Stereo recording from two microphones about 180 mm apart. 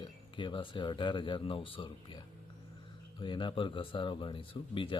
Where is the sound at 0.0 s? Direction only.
30° left (ahead or behind).